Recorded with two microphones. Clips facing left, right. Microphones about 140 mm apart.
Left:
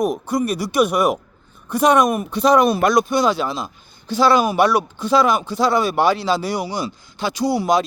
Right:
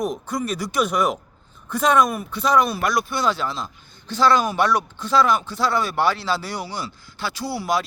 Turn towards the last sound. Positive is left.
turn(degrees=20)  # may be behind; listen again after turning